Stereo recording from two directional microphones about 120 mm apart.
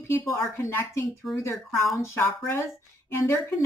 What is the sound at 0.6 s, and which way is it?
Speech, 20° left (ahead or behind).